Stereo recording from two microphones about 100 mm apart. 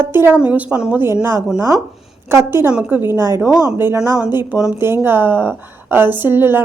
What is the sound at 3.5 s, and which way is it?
A woman's voice, 10° right (ahead or behind).